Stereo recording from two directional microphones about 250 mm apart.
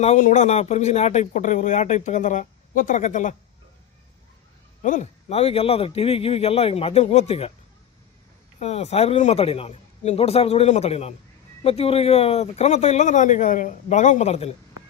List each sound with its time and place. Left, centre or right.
0.0 s speech: left
4.8 s speech: left
8.5 s speech: left